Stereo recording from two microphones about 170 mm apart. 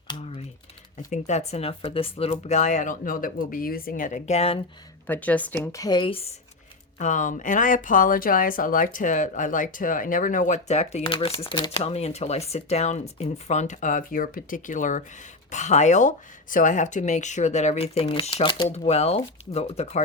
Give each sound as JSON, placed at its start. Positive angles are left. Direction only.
{"t": 0.2, "sound": "typing", "side_deg": 35}
{"t": 1.1, "sound": "speech", "side_deg": 40}
{"t": 5.0, "sound": "speech", "side_deg": 10}
{"t": 7.0, "sound": "speech", "side_deg": 50}